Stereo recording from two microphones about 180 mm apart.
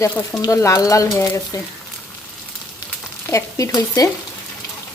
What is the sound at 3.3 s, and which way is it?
Stir, 20° left (ahead or behind).